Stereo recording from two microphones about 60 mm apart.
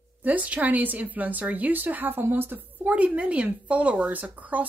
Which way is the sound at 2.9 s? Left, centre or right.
Right.